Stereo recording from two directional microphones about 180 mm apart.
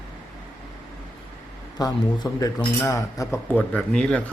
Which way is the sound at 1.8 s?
20° left (ahead or behind).